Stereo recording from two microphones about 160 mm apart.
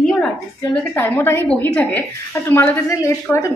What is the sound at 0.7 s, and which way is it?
A woman's voice, 10° left (ahead or behind).